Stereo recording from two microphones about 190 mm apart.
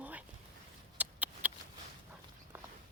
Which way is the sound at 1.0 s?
10° right (ahead or behind).